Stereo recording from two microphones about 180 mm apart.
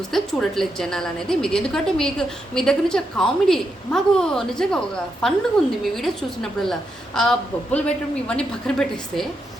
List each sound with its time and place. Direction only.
0.1 s a woman's voice: centre (ahead or behind)